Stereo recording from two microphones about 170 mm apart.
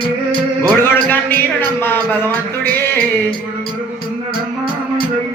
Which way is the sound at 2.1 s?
15° left (ahead or behind).